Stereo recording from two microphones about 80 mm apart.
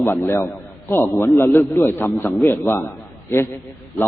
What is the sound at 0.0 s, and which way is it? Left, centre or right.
A man's voice, left.